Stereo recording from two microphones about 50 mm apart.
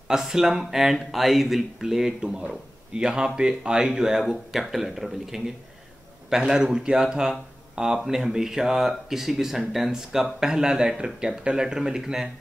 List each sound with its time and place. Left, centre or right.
0.1 s speech: centre